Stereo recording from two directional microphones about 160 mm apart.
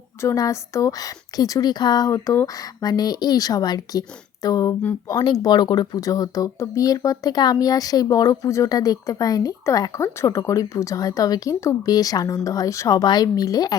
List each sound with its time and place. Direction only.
0.2 s speech: 20° left (ahead or behind)